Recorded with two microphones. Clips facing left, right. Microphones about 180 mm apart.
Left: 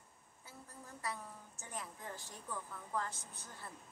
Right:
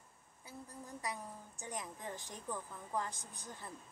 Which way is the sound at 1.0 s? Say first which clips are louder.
Even; 15° right (ahead or behind).